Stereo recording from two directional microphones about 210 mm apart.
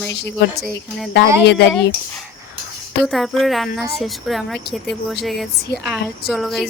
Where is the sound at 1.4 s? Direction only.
55° left (ahead or behind).